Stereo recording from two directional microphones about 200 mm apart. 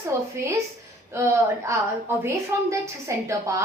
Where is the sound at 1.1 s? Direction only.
15° right (ahead or behind).